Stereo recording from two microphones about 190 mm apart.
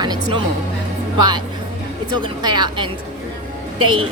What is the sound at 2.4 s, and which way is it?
Speech, 25° right (ahead or behind).